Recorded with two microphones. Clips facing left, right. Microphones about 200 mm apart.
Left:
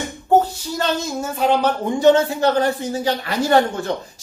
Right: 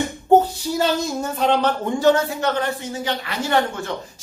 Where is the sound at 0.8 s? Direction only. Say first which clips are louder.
Right 1 dB; centre (ahead or behind).